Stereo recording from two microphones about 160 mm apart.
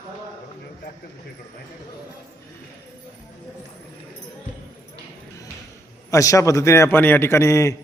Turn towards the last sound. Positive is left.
turn(degrees=20)  # may be behind; listen again after turning